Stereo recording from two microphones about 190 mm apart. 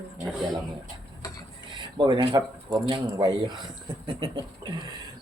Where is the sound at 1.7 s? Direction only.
25° right (ahead or behind).